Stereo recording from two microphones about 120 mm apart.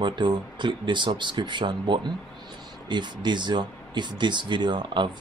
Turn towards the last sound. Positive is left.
turn(degrees=-40)  # may be behind; listen again after turning